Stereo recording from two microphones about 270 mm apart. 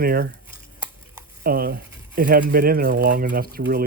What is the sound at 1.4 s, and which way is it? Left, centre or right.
Speech, right.